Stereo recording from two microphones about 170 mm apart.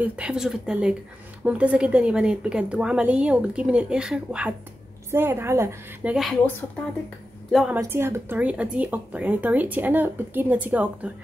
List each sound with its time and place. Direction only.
0.0 s speech: 5° right (ahead or behind)
7.5 s speech: 5° right (ahead or behind)